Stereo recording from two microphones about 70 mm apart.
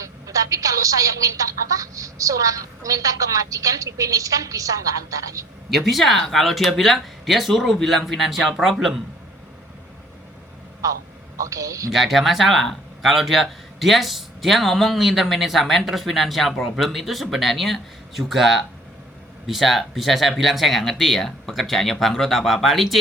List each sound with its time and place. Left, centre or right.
0.0 s a woman's voice: right
5.7 s speech: centre
10.8 s a woman's voice: right
11.9 s speech: centre